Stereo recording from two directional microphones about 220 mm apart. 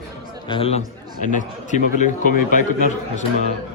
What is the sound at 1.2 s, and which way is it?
A man's voice, 35° left (ahead or behind).